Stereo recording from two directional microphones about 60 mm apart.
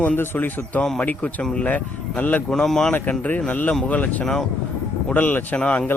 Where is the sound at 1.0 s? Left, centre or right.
Left.